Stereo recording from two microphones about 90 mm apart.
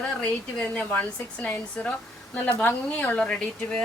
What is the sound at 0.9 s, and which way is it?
A woman's voice, 20° left (ahead or behind).